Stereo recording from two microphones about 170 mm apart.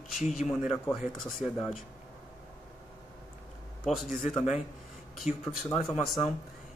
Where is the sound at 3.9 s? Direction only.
Centre (ahead or behind).